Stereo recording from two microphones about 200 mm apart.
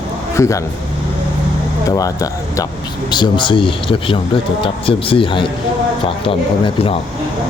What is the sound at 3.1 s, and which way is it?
Speech, 25° left (ahead or behind).